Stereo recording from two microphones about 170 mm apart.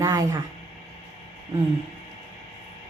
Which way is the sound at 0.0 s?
20° right (ahead or behind).